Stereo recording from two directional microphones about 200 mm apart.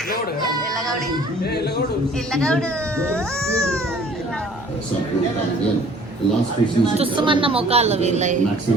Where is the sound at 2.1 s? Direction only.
5° left (ahead or behind).